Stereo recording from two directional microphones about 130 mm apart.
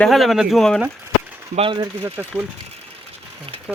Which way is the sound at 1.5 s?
35° right (ahead or behind).